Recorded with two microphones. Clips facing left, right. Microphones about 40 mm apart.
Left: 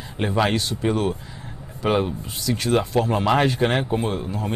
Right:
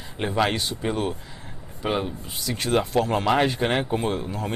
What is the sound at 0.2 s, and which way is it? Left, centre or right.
Speech, centre.